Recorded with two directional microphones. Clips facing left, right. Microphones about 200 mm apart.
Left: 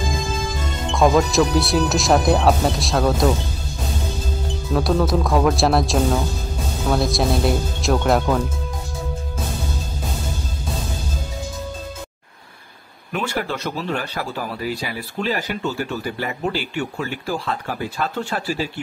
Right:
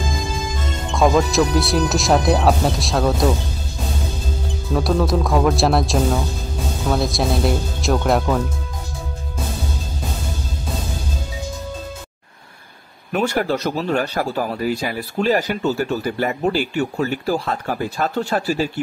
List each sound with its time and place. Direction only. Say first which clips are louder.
0.9 s speech: even; centre (ahead or behind)
4.7 s speech: even; centre (ahead or behind)
13.1 s speech: right 5 dB; 40° right (ahead or behind)